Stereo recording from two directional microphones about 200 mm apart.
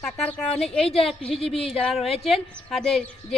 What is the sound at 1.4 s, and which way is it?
Speech, 30° left (ahead or behind).